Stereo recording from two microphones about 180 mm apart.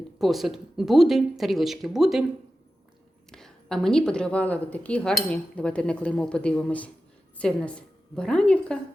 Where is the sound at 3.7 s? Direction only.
5° left (ahead or behind).